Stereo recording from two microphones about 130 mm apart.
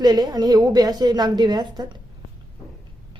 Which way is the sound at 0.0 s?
30° right (ahead or behind).